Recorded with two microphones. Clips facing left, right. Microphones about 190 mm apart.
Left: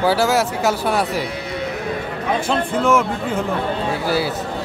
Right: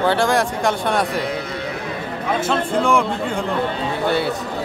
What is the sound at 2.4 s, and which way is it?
Speech, centre (ahead or behind).